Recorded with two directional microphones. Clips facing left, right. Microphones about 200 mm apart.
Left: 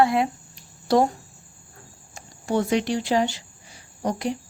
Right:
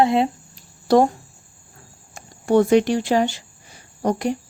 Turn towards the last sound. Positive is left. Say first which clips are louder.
# right 5 dB
turn(degrees=-50)  # may be behind; listen again after turning